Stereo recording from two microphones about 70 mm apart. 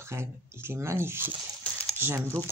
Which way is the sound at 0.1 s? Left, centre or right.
Right.